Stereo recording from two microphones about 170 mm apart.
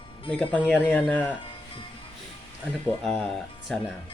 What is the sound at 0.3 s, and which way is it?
Speech, 5° left (ahead or behind).